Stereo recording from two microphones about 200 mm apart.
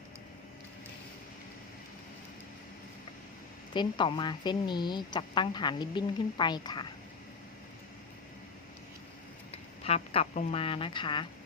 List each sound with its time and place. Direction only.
3.8 s speech: 20° left (ahead or behind)
9.5 s speech: 30° left (ahead or behind)